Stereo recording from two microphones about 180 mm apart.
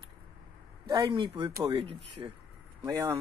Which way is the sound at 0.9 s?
20° right (ahead or behind).